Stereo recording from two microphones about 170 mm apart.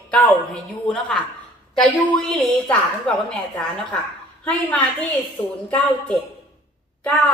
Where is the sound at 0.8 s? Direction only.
5° left (ahead or behind).